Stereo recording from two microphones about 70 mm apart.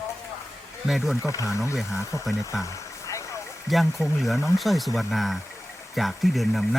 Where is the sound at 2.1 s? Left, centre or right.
Left.